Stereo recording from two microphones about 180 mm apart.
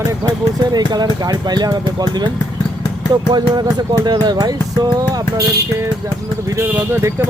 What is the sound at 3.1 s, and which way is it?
Speech, 20° right (ahead or behind).